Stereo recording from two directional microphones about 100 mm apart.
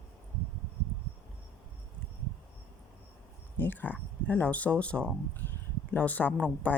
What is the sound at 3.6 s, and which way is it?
A woman's voice, 20° left (ahead or behind).